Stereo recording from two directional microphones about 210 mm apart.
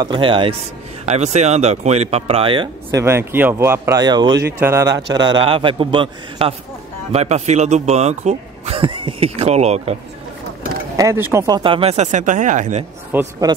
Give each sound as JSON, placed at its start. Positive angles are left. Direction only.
{"t": 0.0, "sound": "a man's voice", "side_deg": -25}
{"t": 11.0, "sound": "speech", "side_deg": -10}
{"t": 13.1, "sound": "speech", "side_deg": -15}